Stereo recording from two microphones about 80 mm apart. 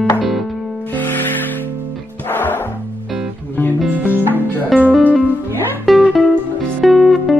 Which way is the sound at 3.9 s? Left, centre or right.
Right.